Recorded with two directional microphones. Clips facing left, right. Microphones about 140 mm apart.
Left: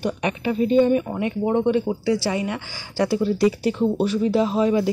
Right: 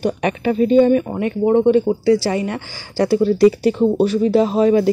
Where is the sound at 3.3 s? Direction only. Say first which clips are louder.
Right 6 dB; 65° right (ahead or behind).